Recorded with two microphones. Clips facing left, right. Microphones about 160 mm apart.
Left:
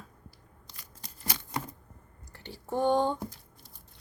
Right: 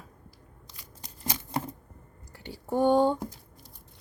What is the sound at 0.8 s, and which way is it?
Shuffling cards, 20° right (ahead or behind).